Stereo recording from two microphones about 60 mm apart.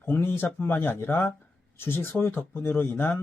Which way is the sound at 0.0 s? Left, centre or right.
Left.